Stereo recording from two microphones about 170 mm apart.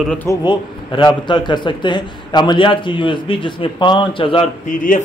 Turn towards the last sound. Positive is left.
turn(degrees=50)  # may be behind; listen again after turning